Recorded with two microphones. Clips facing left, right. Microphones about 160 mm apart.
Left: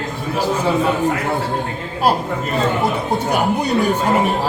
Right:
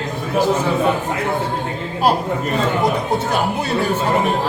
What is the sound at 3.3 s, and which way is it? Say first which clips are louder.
Speech: left 2 dB; 15° left (ahead or behind).